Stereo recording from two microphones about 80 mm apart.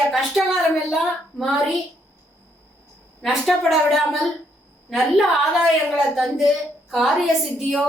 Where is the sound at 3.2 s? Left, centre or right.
Centre.